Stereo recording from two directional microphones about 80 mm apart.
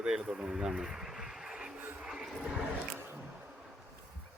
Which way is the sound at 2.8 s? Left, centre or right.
Right.